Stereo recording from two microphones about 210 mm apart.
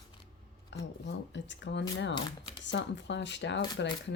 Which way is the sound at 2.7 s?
55° left (ahead or behind).